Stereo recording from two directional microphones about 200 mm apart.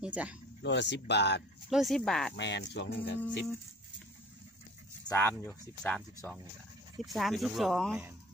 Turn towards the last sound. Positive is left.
turn(degrees=0)  # may be behind; listen again after turning